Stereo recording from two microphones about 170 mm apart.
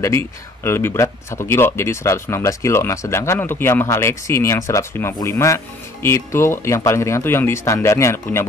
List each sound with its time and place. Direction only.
0.7 s speech: 15° left (ahead or behind)